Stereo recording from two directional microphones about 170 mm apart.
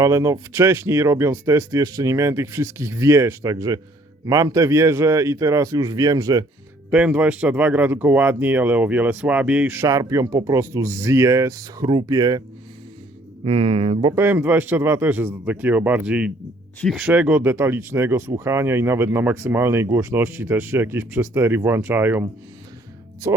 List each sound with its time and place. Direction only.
0.0 s speech: 15° right (ahead or behind)
6.9 s speech: 5° right (ahead or behind); by 12.4 s 20° right (ahead or behind)
13.4 s speech: 35° right (ahead or behind)
14.2 s speech: 10° right (ahead or behind)